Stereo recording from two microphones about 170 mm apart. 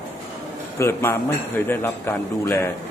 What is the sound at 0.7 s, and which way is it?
A man's voice, 15° left (ahead or behind).